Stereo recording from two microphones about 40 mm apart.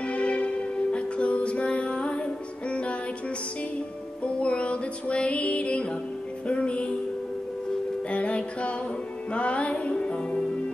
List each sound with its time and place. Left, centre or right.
0.0 s music: left
4.2 s music: left
8.1 s music: left